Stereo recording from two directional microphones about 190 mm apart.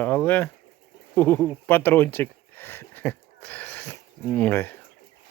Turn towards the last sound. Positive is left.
turn(degrees=10)  # may be behind; listen again after turning